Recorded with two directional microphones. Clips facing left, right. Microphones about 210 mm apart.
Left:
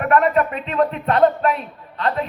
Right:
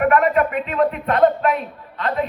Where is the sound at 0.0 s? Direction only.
35° left (ahead or behind).